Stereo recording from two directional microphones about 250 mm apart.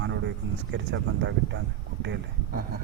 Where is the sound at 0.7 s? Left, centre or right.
Right.